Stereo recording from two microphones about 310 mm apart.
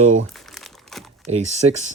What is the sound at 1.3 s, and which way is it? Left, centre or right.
Speech, right.